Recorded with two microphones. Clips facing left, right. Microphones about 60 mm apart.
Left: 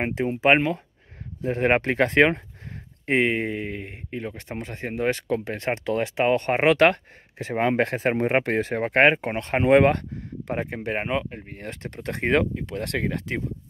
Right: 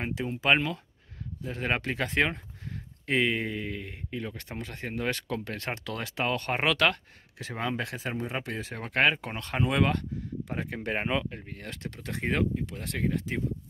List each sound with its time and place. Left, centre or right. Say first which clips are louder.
0.0 s speech: left 8 dB; left
2.7 s speech: left 5 dB; left
7.6 s speech: left 10 dB; left
10.7 s speech: even; centre; by 12.1 s left
12.1 s speech: left 6 dB; left